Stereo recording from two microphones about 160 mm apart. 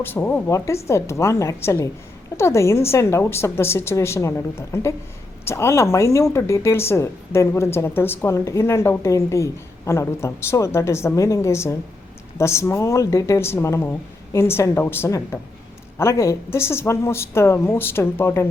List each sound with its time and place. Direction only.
0.0 s speech: 10° left (ahead or behind)